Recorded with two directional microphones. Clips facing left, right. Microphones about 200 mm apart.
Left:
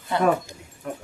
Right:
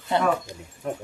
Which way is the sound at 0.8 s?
30° right (ahead or behind).